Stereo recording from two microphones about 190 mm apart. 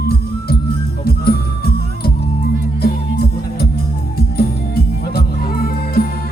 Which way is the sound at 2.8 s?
55° left (ahead or behind).